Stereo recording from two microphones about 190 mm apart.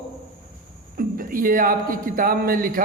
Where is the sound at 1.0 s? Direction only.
50° right (ahead or behind).